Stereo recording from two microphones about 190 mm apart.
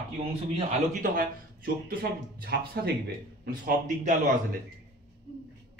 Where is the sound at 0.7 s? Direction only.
45° right (ahead or behind).